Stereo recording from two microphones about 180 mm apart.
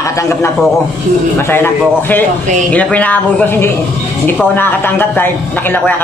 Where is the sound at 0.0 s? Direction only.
15° left (ahead or behind).